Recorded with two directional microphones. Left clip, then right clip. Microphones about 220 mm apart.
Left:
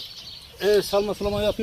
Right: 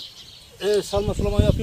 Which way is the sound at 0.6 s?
20° left (ahead or behind).